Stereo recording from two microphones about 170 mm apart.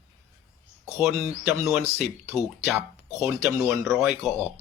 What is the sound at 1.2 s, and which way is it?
Speech, 15° right (ahead or behind).